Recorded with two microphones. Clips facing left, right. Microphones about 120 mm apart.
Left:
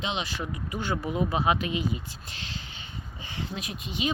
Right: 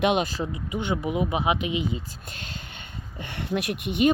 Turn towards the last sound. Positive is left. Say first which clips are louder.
# right 9 dB
turn(degrees=-60)  # may be behind; listen again after turning